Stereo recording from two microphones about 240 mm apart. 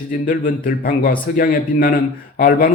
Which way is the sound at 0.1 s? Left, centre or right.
Left.